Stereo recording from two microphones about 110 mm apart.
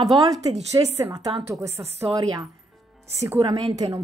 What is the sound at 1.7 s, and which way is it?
Speech, 65° right (ahead or behind).